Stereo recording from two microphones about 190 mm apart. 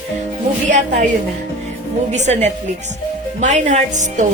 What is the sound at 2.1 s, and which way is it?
Speech, 35° right (ahead or behind).